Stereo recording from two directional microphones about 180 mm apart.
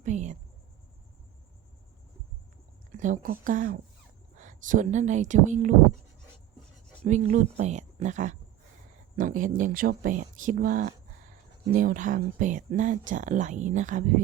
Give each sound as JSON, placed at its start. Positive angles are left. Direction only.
{"t": 0.0, "sound": "a sound", "side_deg": -40}
{"t": 3.0, "sound": "speech", "side_deg": -45}
{"t": 7.0, "sound": "speech", "side_deg": -45}